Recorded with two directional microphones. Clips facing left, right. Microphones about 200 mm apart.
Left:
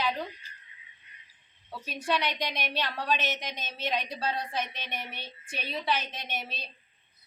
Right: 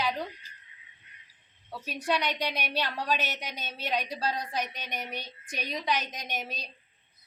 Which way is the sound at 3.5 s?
35° right (ahead or behind).